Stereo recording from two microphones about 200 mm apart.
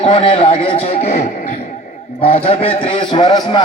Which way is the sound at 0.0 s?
25° left (ahead or behind).